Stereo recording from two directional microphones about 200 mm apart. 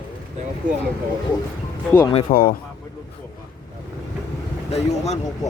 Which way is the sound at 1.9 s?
20° left (ahead or behind).